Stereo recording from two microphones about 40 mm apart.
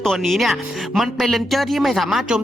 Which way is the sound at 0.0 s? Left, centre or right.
Centre.